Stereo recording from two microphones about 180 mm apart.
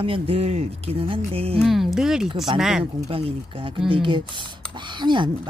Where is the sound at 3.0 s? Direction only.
30° right (ahead or behind).